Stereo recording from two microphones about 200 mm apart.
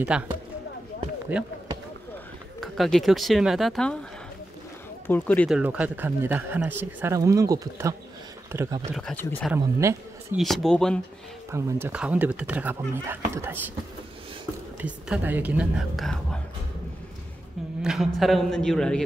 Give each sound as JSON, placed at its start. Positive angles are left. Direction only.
{"t": 0.1, "sound": "speech", "side_deg": -5}
{"t": 1.3, "sound": "speech", "side_deg": -5}
{"t": 2.6, "sound": "speech", "side_deg": 0}
{"t": 5.0, "sound": "a man's voice", "side_deg": 10}
{"t": 5.6, "sound": "speech", "side_deg": -5}
{"t": 9.2, "sound": "a man's voice", "side_deg": 10}
{"t": 9.5, "sound": "speech", "side_deg": -15}
{"t": 10.3, "sound": "speech", "side_deg": 0}
{"t": 11.5, "sound": "speech", "side_deg": -10}
{"t": 14.8, "sound": "speech", "side_deg": -10}
{"t": 17.8, "sound": "speech", "side_deg": 0}